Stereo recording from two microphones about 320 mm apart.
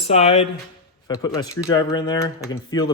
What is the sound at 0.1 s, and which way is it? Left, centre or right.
Speech, centre.